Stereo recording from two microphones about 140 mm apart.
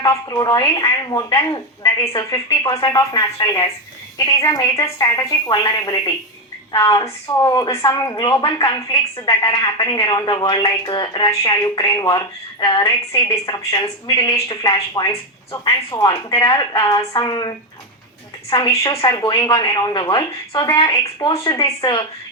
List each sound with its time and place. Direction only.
0.0 s a woman's voice: 30° left (ahead or behind)
18.7 s a woman's voice: 25° left (ahead or behind)